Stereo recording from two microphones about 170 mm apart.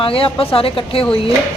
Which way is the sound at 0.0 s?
30° left (ahead or behind).